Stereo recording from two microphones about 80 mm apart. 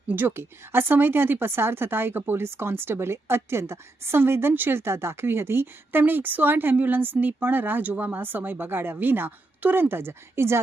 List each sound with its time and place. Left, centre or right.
0.1 s a woman's voice: right